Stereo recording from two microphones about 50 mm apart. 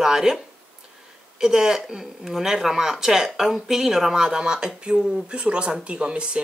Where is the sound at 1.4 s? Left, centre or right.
Centre.